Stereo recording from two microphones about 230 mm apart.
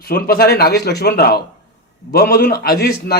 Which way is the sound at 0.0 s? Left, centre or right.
Left.